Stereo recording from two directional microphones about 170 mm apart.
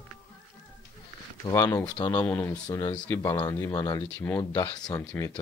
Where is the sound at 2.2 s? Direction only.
10° left (ahead or behind).